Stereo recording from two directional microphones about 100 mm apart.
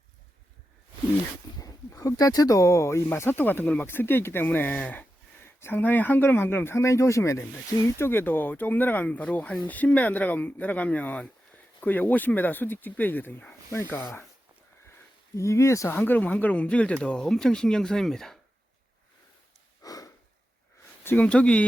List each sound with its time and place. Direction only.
1.5 s speech: 35° left (ahead or behind)
15.4 s speech: 30° left (ahead or behind); by 18.3 s 5° left (ahead or behind)
19.8 s a sound: 35° left (ahead or behind)
21.0 s speech: 20° left (ahead or behind)